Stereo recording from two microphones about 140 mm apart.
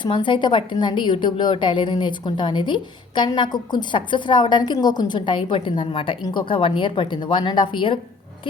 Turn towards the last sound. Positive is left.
turn(degrees=35)  # may be behind; listen again after turning